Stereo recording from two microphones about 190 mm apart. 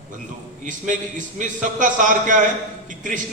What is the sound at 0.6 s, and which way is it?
A man's voice, 45° right (ahead or behind).